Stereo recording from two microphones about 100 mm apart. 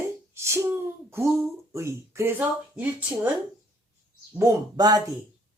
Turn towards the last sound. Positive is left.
turn(degrees=-40)  # may be behind; listen again after turning